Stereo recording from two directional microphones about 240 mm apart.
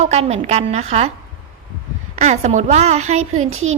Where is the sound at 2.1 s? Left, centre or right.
Right.